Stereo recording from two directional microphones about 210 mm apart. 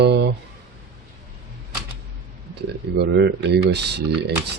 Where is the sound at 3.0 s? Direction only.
55° right (ahead or behind).